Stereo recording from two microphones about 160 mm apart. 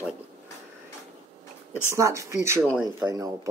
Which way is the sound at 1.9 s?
20° right (ahead or behind).